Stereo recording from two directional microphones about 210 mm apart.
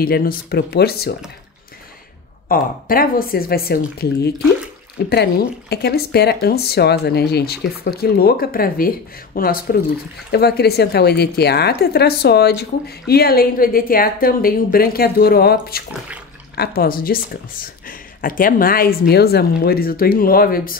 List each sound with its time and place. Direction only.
0.0 s a woman's voice: 45° left (ahead or behind)
2.4 s a woman's voice: 45° left (ahead or behind)